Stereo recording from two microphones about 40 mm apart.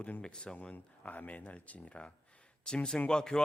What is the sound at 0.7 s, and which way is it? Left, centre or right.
Speech, left.